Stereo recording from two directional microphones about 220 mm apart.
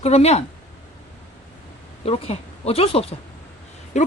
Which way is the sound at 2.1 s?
25° left (ahead or behind).